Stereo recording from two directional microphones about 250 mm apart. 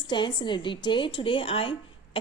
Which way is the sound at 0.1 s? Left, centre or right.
Centre.